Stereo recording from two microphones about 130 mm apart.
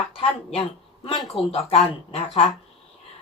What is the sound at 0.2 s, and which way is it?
Speech, 50° left (ahead or behind).